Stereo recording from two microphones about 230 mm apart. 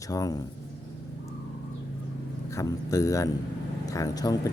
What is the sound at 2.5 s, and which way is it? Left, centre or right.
Speech, centre.